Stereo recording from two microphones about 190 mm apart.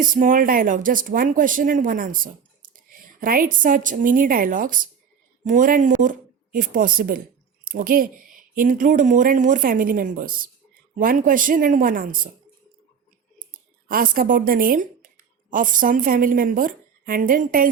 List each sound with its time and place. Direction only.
0.0 s speech: 45° right (ahead or behind)
13.8 s a woman's voice: 50° right (ahead or behind)